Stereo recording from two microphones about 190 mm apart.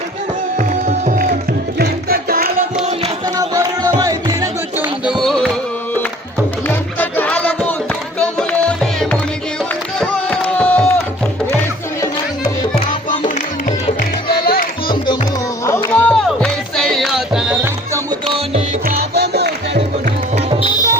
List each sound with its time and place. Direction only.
0.6 s music: 40° right (ahead or behind)
3.3 s music: 20° right (ahead or behind)
5.2 s music: centre (ahead or behind)
6.7 s music: 10° left (ahead or behind)
10.0 s a sound: 5° left (ahead or behind)
12.7 s music: 30° left (ahead or behind)
13.1 s music: 40° left (ahead or behind)
14.3 s music: 55° left (ahead or behind)
15.6 s music: 15° left (ahead or behind); by 18.2 s 15° right (ahead or behind)
18.3 s music: 30° right (ahead or behind)
18.9 s music: 55° right (ahead or behind)
20.3 s music: 35° right (ahead or behind)